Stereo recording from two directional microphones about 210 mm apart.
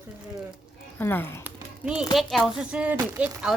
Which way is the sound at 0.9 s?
10° left (ahead or behind).